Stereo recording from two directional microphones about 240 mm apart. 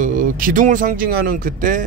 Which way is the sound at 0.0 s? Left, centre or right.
Right.